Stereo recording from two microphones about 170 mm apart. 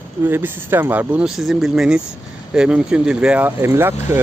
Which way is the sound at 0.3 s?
10° right (ahead or behind).